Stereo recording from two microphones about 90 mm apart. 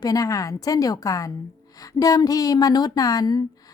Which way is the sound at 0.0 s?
40° left (ahead or behind).